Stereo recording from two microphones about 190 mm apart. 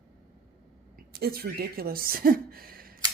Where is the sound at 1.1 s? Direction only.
55° right (ahead or behind).